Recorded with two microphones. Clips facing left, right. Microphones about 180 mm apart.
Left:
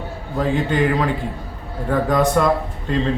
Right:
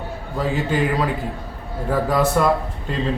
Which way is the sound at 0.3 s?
5° right (ahead or behind).